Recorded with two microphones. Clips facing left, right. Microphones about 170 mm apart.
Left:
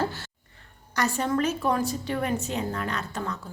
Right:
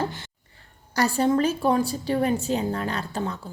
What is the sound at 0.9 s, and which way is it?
A woman's voice, 35° right (ahead or behind).